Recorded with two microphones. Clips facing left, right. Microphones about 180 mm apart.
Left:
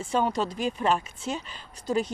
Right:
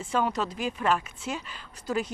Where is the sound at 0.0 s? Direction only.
30° left (ahead or behind).